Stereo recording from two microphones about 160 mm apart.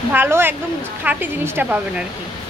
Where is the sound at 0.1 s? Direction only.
15° right (ahead or behind).